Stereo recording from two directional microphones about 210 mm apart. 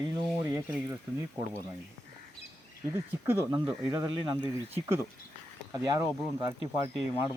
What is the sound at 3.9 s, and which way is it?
Speech, 15° right (ahead or behind).